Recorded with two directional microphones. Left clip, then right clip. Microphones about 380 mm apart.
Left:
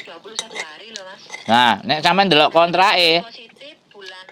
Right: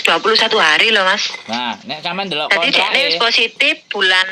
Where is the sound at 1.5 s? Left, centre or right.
Left.